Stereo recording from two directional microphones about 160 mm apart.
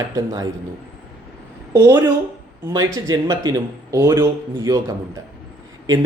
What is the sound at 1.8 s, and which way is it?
Speech, 20° right (ahead or behind).